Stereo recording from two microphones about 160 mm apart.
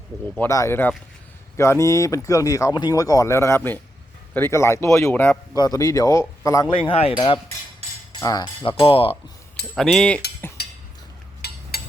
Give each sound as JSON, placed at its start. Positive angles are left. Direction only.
{"t": 0.3, "sound": "speech", "side_deg": 20}
{"t": 5.5, "sound": "speech", "side_deg": 25}
{"t": 6.7, "sound": "speech", "side_deg": 35}
{"t": 8.2, "sound": "speech", "side_deg": 25}
{"t": 9.7, "sound": "speech", "side_deg": 5}
{"t": 10.6, "sound": "a sound", "side_deg": 85}